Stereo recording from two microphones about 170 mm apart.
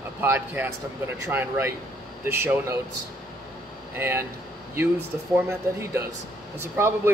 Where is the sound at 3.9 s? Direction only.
15° right (ahead or behind).